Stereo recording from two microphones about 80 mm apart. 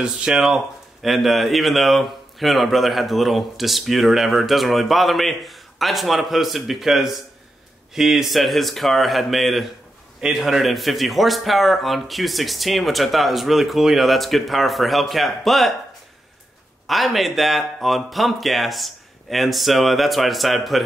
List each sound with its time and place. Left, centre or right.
0.0 s speech: centre
16.8 s speech: centre